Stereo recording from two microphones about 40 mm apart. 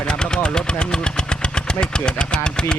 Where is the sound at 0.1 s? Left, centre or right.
Left.